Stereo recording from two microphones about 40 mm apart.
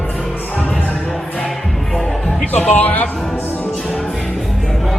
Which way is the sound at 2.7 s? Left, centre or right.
Left.